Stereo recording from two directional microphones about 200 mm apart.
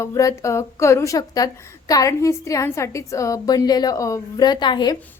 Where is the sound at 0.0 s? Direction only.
15° left (ahead or behind).